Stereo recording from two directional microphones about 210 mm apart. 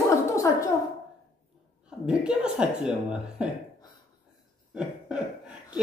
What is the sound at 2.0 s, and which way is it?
Speech, 5° right (ahead or behind).